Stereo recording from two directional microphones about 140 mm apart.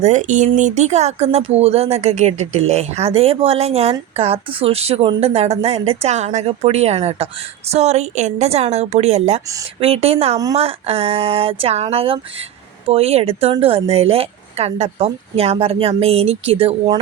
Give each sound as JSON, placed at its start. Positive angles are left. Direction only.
{"t": 0.0, "sound": "speech", "side_deg": -60}